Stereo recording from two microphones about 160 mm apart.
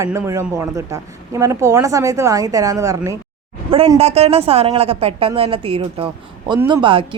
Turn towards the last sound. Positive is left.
turn(degrees=-30)  # may be behind; listen again after turning